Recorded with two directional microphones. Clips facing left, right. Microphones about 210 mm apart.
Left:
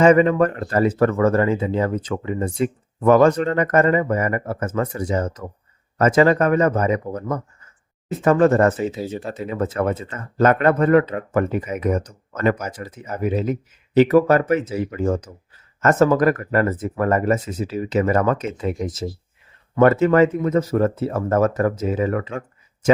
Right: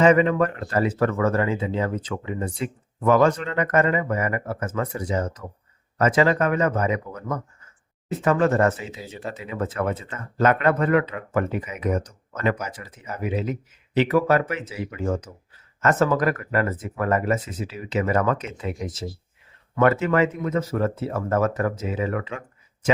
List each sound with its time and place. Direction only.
0.0 s speech: 40° left (ahead or behind)
19.7 s speech: 40° left (ahead or behind)